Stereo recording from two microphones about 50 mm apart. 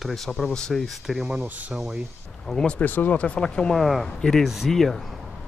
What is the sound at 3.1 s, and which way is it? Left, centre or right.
Speech, left.